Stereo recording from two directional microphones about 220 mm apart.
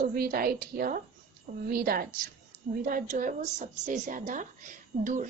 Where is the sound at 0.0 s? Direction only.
40° right (ahead or behind).